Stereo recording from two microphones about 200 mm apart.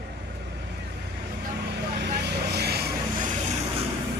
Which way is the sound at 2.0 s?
55° right (ahead or behind).